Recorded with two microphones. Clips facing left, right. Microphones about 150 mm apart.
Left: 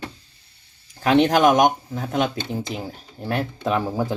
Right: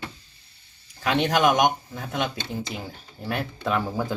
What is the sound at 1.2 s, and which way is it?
Speech, 45° left (ahead or behind).